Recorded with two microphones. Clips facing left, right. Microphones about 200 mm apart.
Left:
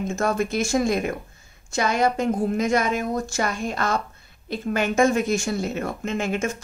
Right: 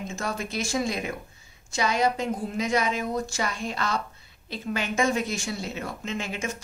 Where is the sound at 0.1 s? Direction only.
50° left (ahead or behind).